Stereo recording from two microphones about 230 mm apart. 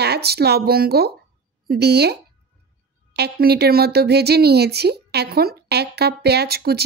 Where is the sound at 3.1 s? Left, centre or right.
Right.